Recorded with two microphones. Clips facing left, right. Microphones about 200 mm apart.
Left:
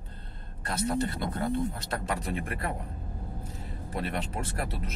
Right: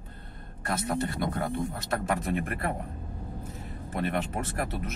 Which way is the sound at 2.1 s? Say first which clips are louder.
Right 3 dB; 50° right (ahead or behind).